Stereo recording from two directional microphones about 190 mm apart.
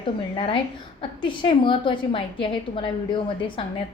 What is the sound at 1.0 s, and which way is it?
A woman's voice, 25° left (ahead or behind).